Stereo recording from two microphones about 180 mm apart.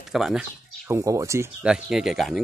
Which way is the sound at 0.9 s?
15° right (ahead or behind).